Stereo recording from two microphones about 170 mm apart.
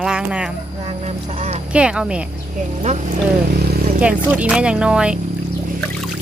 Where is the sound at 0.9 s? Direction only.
40° right (ahead or behind).